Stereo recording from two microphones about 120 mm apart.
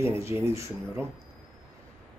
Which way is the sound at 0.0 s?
20° right (ahead or behind).